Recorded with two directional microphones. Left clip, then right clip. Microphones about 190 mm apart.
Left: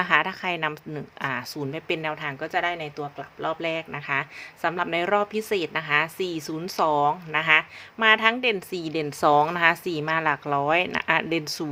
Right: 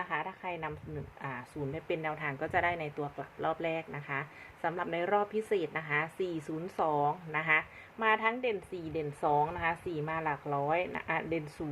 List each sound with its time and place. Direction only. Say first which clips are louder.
0.0 s a woman's voice: left 14 dB; 45° left (ahead or behind); by 2.3 s 25° left (ahead or behind)
2.4 s speech: left 5 dB; 15° left (ahead or behind); by 11.6 s 35° left (ahead or behind)